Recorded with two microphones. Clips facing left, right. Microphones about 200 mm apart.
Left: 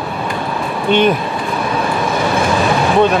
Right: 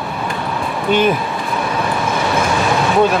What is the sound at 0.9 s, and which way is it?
Speech, 5° right (ahead or behind).